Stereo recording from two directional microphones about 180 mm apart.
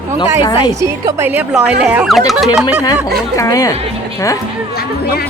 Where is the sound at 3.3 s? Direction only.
20° left (ahead or behind).